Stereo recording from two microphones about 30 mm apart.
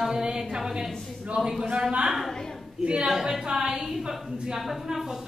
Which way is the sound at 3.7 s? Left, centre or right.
Centre.